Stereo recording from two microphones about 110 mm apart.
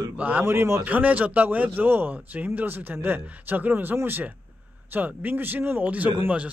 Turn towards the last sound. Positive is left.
turn(degrees=-10)  # may be behind; listen again after turning